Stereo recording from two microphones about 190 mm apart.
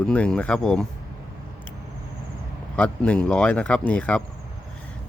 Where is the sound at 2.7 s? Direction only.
5° left (ahead or behind).